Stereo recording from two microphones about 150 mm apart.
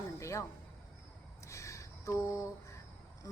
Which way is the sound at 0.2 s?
20° left (ahead or behind).